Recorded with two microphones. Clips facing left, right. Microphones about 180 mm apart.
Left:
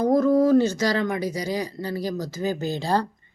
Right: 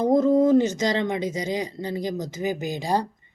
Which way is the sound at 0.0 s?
20° right (ahead or behind).